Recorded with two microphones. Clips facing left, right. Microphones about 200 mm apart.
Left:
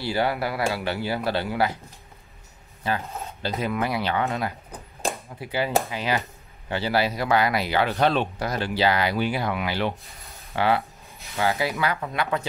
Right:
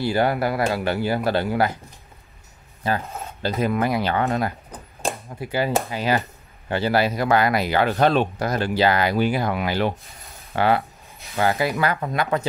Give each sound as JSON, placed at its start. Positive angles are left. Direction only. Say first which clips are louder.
{"t": 0.0, "sound": "speech", "louder": "right 4 dB", "side_deg": -50}
{"t": 2.8, "sound": "speech", "louder": "right 3 dB", "side_deg": -45}
{"t": 6.7, "sound": "speech", "louder": "right 3 dB", "side_deg": -50}
{"t": 10.8, "sound": "a sound", "louder": "right 2 dB", "side_deg": 0}
{"t": 11.3, "sound": "speech", "louder": "right 3 dB", "side_deg": -50}